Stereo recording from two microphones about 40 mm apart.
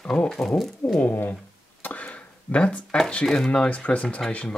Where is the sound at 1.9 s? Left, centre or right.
Left.